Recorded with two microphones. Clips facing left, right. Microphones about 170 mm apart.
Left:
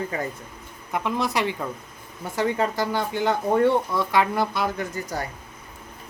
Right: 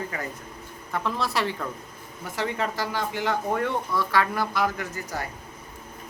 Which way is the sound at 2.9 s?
30° left (ahead or behind).